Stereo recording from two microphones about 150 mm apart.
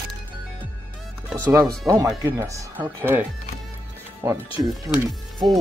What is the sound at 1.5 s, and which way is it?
Speech, 20° right (ahead or behind).